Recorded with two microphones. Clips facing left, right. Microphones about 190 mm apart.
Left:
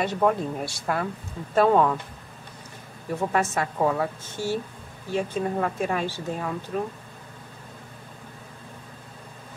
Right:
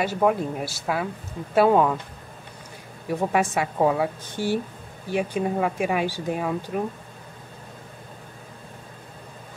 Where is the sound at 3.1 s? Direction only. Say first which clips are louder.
Right 2 dB; 15° right (ahead or behind).